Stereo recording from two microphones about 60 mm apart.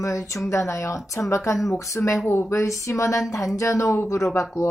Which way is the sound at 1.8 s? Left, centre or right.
Left.